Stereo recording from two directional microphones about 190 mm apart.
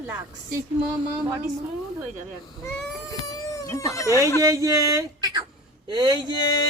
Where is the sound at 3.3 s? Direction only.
15° left (ahead or behind).